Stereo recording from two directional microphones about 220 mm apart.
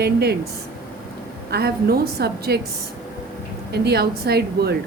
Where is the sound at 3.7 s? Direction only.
45° right (ahead or behind).